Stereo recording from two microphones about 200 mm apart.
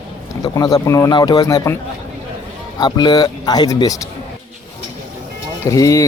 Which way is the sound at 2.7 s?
20° left (ahead or behind).